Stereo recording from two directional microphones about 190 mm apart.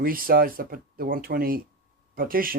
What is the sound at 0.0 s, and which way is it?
Speech, 50° right (ahead or behind).